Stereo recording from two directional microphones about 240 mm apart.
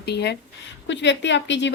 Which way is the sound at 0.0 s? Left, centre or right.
Left.